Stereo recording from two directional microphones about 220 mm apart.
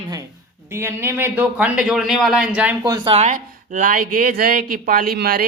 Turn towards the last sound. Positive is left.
turn(degrees=-40)  # may be behind; listen again after turning